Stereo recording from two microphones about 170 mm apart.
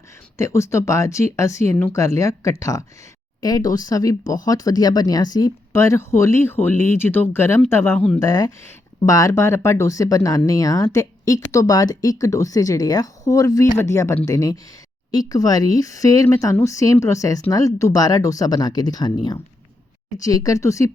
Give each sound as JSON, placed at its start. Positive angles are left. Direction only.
{"t": 0.3, "sound": "speech", "side_deg": 15}